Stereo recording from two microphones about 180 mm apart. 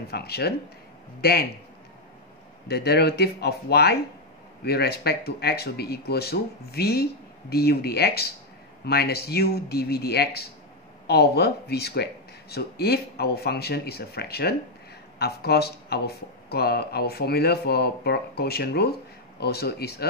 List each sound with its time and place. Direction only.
0.1 s speech: 65° left (ahead or behind)
2.7 s speech: 65° left (ahead or behind)